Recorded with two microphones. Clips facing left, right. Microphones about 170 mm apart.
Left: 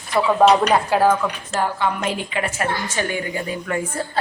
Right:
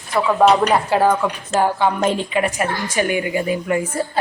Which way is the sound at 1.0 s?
15° right (ahead or behind).